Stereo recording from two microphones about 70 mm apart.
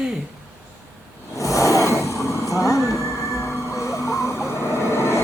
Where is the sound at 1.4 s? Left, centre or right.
Left.